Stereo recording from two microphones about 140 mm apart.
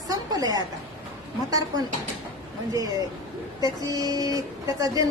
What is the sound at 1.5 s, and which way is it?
Speech, 25° right (ahead or behind).